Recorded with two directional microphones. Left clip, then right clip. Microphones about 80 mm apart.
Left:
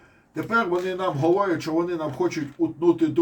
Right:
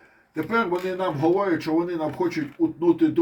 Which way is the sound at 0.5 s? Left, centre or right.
Centre.